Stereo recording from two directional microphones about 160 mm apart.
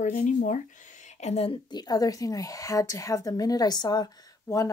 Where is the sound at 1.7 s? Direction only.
25° left (ahead or behind).